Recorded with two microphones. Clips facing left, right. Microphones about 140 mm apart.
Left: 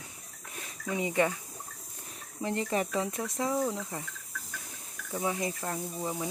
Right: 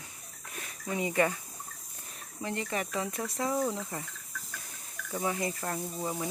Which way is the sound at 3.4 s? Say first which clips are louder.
Even; centre (ahead or behind).